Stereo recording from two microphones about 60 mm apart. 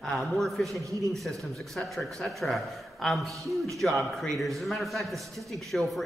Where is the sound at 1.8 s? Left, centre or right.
Centre.